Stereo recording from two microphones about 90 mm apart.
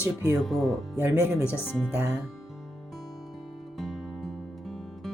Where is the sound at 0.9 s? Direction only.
25° right (ahead or behind).